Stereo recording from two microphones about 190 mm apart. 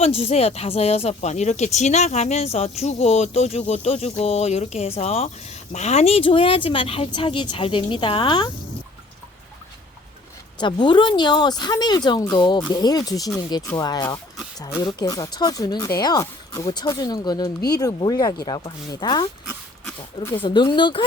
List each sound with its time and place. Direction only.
0.0 s speech: 30° left (ahead or behind)
10.6 s speech: 25° left (ahead or behind)
20.3 s speech: 25° left (ahead or behind)